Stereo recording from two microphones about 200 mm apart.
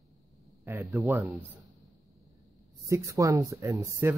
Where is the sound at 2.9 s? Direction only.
15° right (ahead or behind).